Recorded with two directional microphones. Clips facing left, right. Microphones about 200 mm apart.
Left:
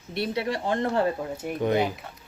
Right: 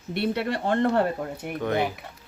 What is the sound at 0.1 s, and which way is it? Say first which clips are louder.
Speech: right 2 dB; 60° right (ahead or behind).